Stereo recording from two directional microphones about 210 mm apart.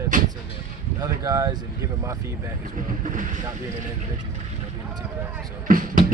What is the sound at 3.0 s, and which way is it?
Speech, 40° right (ahead or behind).